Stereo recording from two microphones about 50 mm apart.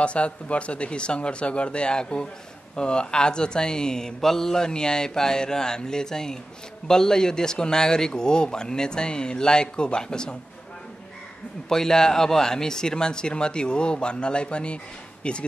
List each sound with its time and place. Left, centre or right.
0.0 s speech: left
11.7 s speech: centre